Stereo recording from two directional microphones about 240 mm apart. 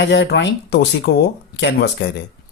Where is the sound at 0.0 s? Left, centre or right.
Left.